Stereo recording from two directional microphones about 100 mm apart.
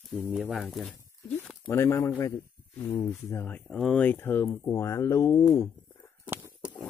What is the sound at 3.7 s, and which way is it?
Speech, 10° left (ahead or behind).